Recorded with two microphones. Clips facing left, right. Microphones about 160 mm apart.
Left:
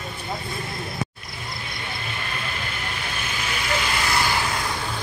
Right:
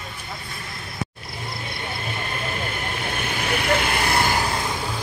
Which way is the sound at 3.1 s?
60° right (ahead or behind).